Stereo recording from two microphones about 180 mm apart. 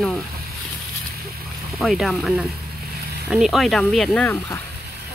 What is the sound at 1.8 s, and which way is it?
Speech, centre (ahead or behind).